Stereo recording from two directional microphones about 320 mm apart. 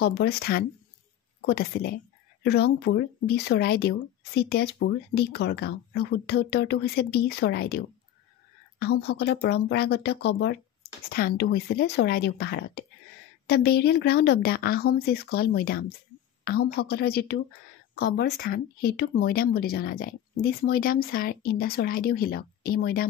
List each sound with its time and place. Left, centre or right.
0.0 s speech: left